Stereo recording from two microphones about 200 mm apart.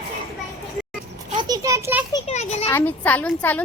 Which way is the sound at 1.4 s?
20° right (ahead or behind).